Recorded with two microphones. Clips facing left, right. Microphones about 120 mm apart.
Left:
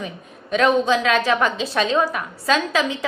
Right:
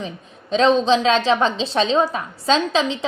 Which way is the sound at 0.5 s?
25° right (ahead or behind).